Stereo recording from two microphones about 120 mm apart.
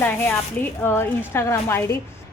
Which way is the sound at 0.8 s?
20° left (ahead or behind).